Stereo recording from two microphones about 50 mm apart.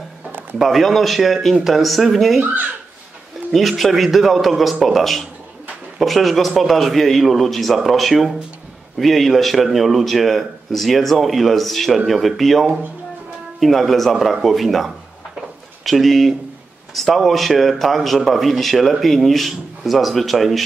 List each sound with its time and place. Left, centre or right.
0.3 s a sound: right
0.6 s a man's voice: centre
3.5 s a man's voice: centre